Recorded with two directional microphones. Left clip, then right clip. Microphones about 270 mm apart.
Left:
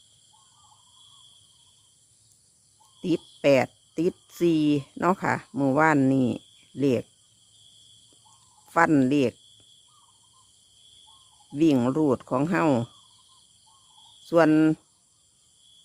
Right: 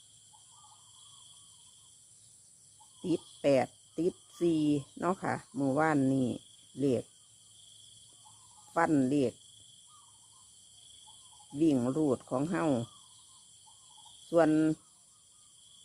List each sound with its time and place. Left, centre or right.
3.0 s speech: left
8.7 s speech: left
11.5 s speech: left
14.3 s speech: left